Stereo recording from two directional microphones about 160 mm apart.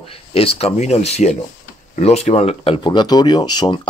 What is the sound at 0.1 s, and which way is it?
Speech, 35° left (ahead or behind).